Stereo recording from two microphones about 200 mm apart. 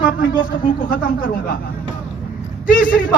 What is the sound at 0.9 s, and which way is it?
Speech, 45° left (ahead or behind).